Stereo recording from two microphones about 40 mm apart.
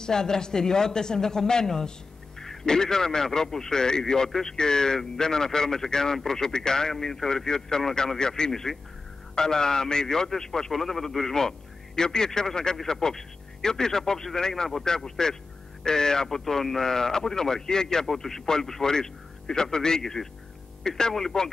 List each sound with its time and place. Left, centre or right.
0.0 s a man's voice: centre